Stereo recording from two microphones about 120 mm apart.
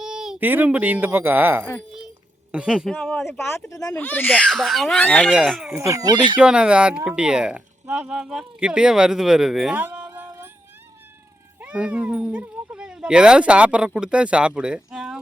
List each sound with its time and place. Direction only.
0.0 s a sound: 5° right (ahead or behind)
0.3 s a child's voice: 15° right (ahead or behind); by 3.3 s centre (ahead or behind)
3.7 s speech: 30° left (ahead or behind)
3.9 s a child's voice: 15° left (ahead or behind)
4.4 s a child's voice: centre (ahead or behind)
5.3 s a child's voice: 5° right (ahead or behind)
5.7 s speech: 25° right (ahead or behind)
6.4 s speech: 10° right (ahead or behind)
9.7 s music: 10° right (ahead or behind)
11.6 s speech: 10° right (ahead or behind)